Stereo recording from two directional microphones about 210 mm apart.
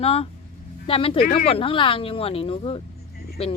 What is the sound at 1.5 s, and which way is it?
Speech, 25° left (ahead or behind).